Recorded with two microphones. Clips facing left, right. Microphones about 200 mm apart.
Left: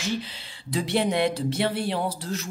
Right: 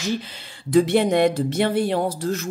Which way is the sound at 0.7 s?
50° right (ahead or behind).